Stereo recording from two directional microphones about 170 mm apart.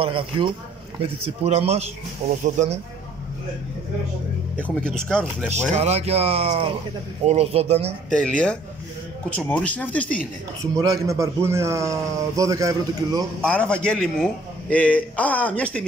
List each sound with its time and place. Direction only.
0.0 s speech: 30° right (ahead or behind)
4.6 s a man's voice: 5° left (ahead or behind)
5.5 s speech: 40° right (ahead or behind)
8.1 s a man's voice: 5° left (ahead or behind)
10.6 s a man's voice: 20° right (ahead or behind)
13.4 s a man's voice: 5° left (ahead or behind)